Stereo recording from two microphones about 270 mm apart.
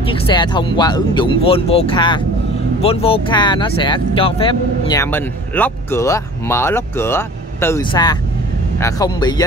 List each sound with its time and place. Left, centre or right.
0.0 s speech: centre